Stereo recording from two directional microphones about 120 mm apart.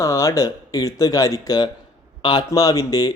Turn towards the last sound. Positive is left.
turn(degrees=30)  # may be behind; listen again after turning